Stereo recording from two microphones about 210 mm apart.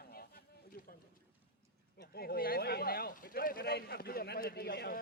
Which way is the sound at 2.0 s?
50° left (ahead or behind).